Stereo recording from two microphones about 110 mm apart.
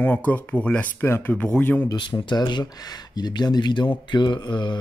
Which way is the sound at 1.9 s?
45° left (ahead or behind).